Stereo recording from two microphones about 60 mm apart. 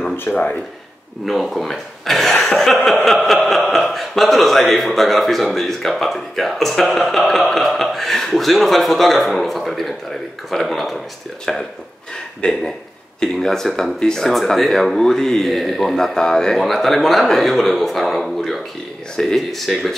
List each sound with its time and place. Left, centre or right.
0.3 s speech: left
1.2 s a man's voice: centre
2.5 s chuckle: centre
3.1 s a man's voice: centre
13.2 s a man's voice: centre